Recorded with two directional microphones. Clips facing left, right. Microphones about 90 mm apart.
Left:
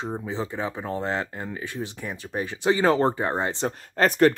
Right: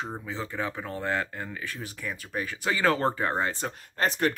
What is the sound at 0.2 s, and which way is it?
Speech, 20° left (ahead or behind).